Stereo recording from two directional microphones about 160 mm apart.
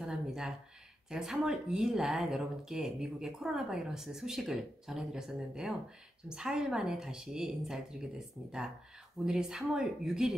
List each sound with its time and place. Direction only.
0.0 s a sound: 5° right (ahead or behind)
1.1 s speech: 5° right (ahead or behind)
9.2 s speech: 5° right (ahead or behind)